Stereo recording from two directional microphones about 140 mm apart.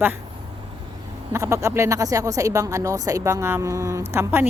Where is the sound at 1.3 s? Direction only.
20° right (ahead or behind).